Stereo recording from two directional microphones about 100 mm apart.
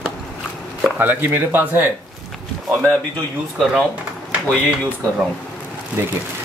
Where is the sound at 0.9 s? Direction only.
15° right (ahead or behind).